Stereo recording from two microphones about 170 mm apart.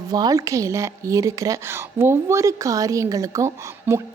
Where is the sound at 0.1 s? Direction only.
20° right (ahead or behind).